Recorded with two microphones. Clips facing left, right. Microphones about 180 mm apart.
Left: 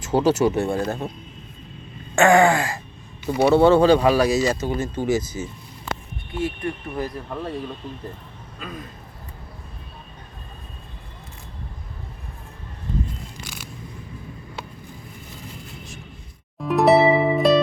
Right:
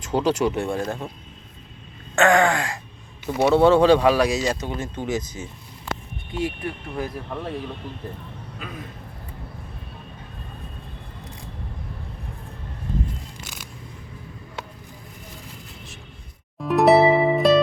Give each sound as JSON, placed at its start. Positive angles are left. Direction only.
{"t": 0.0, "sound": "speech", "side_deg": 5}
{"t": 2.1, "sound": "groan", "side_deg": 10}
{"t": 3.2, "sound": "speech", "side_deg": 0}
{"t": 6.6, "sound": "speech", "side_deg": 0}
{"t": 16.6, "sound": "harp", "side_deg": 0}